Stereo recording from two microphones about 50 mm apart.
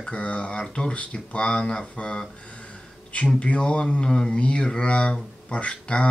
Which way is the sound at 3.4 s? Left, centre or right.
Left.